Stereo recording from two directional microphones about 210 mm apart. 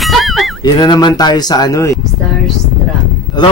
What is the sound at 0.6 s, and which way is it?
Speech, 20° left (ahead or behind).